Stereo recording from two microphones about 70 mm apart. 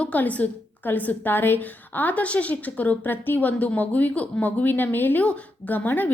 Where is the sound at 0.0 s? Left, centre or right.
Left.